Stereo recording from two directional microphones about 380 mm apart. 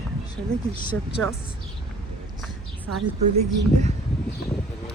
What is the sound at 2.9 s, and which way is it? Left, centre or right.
Speech, right.